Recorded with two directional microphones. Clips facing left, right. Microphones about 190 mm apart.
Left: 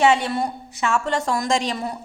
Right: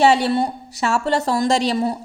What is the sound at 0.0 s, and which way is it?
A woman's voice, 35° right (ahead or behind).